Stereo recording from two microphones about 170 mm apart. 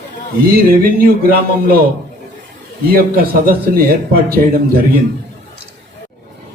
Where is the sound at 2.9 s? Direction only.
60° right (ahead or behind).